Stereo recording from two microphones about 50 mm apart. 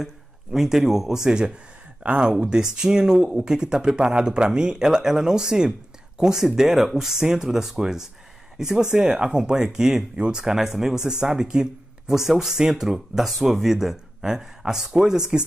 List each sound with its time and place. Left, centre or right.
0.0 s speech: centre